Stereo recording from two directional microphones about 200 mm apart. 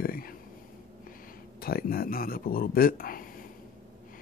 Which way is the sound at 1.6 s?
50° left (ahead or behind).